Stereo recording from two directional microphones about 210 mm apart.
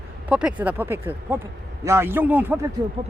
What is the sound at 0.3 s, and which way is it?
Speech, 5° right (ahead or behind).